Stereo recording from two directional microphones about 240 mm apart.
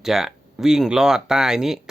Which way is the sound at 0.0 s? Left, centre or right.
Centre.